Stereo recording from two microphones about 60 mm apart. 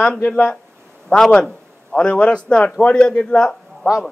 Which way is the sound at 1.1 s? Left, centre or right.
Centre.